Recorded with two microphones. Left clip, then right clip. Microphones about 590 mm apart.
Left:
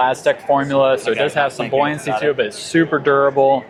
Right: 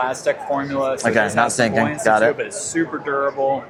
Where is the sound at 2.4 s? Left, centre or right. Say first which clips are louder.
Left 6 dB; left.